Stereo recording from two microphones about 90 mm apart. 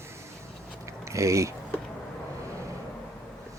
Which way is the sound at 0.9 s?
35° right (ahead or behind).